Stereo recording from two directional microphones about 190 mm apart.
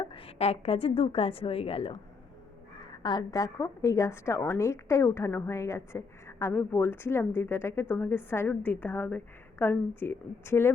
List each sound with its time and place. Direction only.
0.0 s a woman's voice: 30° left (ahead or behind)
3.0 s a woman's voice: 20° left (ahead or behind)